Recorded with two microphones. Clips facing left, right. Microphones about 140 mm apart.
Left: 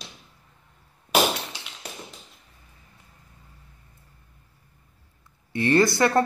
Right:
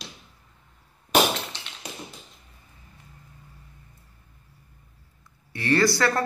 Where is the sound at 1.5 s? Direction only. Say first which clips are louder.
Even; 10° left (ahead or behind).